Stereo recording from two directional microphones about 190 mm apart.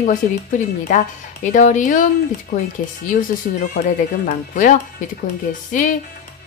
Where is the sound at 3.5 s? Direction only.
50° left (ahead or behind).